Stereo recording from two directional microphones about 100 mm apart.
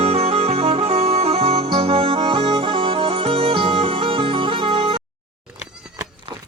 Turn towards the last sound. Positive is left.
turn(degrees=-65)  # may be behind; listen again after turning